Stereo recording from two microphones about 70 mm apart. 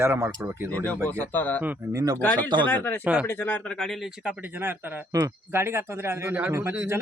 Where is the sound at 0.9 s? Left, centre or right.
Left.